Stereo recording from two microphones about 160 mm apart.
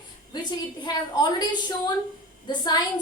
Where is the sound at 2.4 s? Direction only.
25° left (ahead or behind).